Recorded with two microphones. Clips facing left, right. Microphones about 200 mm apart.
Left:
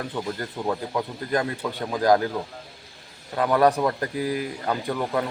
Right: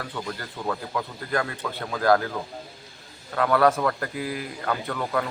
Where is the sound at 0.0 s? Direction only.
20° left (ahead or behind).